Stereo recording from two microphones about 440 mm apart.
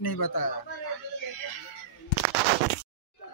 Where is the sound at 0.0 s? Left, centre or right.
Left.